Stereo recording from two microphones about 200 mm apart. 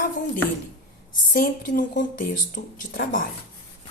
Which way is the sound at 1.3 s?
45° left (ahead or behind).